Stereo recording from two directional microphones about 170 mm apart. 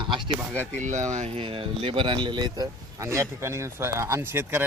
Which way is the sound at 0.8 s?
45° right (ahead or behind).